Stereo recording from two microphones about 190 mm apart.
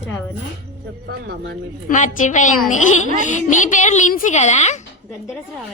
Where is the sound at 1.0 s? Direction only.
60° right (ahead or behind).